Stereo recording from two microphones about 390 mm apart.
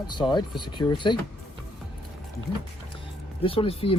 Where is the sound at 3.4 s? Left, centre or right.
Centre.